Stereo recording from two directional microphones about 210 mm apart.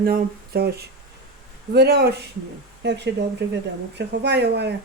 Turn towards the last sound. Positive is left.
turn(degrees=-55)  # may be behind; listen again after turning